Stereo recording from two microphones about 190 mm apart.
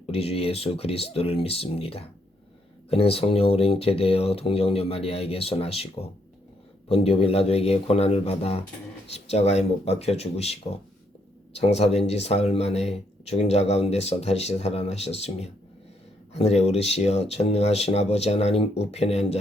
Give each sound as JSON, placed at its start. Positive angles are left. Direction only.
{"t": 0.0, "sound": "speech", "side_deg": 30}